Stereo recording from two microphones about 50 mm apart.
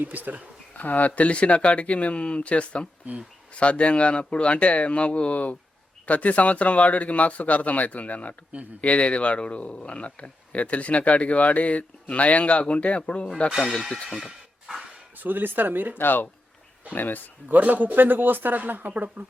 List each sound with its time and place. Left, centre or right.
0.0 s speech: right
0.8 s a man's voice: left
14.1 s a sound: centre
15.2 s speech: right
16.0 s speech: left
17.5 s speech: right